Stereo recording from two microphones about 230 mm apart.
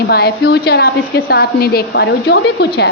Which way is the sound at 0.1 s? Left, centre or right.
Left.